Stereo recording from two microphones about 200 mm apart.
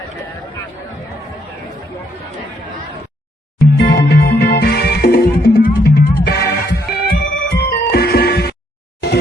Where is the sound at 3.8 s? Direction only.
50° left (ahead or behind).